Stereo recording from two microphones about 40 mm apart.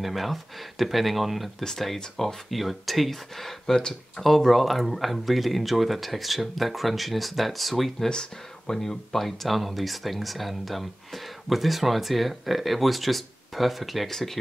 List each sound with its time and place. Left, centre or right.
0.0 s speech: centre
1.6 s speech: centre
2.5 s speech: centre
8.1 s speech: centre
8.7 s speech: centre